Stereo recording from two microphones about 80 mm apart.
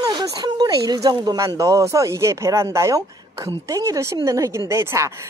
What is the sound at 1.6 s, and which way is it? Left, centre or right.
Speech, right.